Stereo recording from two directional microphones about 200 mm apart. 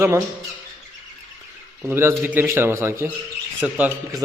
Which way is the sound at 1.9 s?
10° right (ahead or behind).